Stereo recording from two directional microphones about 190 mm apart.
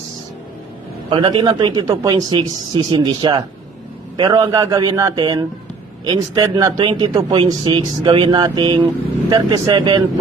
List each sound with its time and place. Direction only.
1.1 s speech: 25° right (ahead or behind)